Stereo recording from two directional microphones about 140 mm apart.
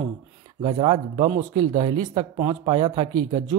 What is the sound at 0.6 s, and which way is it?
A man's voice, 35° right (ahead or behind).